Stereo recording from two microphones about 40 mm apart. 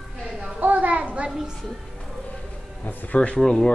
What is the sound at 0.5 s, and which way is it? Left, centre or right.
Speech, right.